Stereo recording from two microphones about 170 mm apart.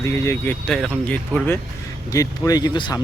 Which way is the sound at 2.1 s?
20° left (ahead or behind).